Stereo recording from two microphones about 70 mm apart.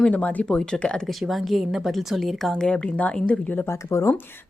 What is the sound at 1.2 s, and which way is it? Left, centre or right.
A woman's voice, centre.